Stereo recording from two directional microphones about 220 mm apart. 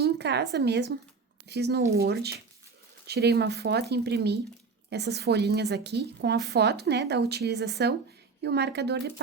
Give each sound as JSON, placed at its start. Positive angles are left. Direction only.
{"t": 0.0, "sound": "a woman's voice", "side_deg": -50}